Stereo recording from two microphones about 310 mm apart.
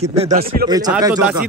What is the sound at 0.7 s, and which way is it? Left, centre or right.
Speech, centre.